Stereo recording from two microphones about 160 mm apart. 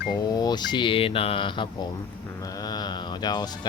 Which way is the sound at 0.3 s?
25° left (ahead or behind).